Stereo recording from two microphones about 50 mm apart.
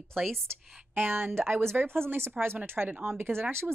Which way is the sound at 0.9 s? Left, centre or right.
Right.